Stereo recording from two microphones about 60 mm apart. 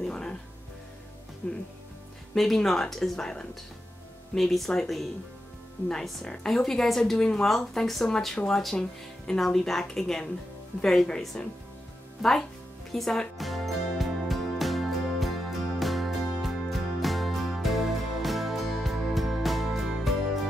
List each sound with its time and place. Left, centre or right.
0.1 s music: centre
1.4 s speech: left
2.3 s a woman's voice: centre
13.4 s music: centre